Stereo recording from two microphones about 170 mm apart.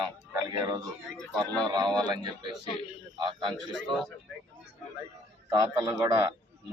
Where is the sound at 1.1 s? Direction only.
5° left (ahead or behind).